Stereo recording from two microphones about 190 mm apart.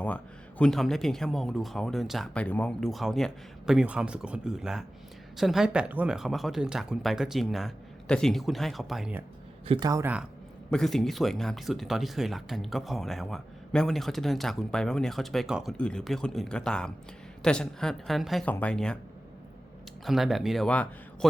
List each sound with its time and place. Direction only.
0.6 s speech: centre (ahead or behind)
9.6 s speech: 25° right (ahead or behind)
10.7 s speech: centre (ahead or behind)
20.1 s speech: centre (ahead or behind)